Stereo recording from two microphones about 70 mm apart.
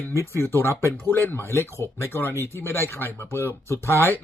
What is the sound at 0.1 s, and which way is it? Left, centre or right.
Speech, left.